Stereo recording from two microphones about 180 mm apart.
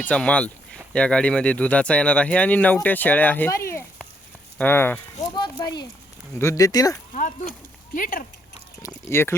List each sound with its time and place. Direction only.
0.0 s speech: 5° left (ahead or behind)
5.3 s a sound: 25° left (ahead or behind)
6.4 s speech: 15° left (ahead or behind)
7.1 s speech: 45° left (ahead or behind)
9.0 s speech: 15° left (ahead or behind)